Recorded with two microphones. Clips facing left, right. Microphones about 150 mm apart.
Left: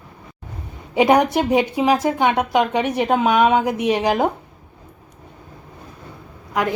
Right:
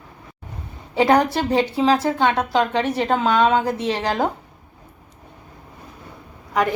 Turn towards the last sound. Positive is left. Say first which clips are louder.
# even
turn(degrees=15)  # may be behind; listen again after turning